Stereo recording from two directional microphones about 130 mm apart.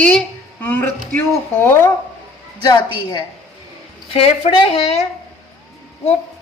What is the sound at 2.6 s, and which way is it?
Speech, 30° left (ahead or behind).